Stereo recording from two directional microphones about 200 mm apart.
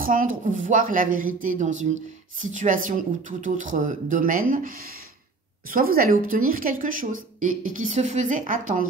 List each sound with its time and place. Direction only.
0.0 s a woman's voice: 45° right (ahead or behind)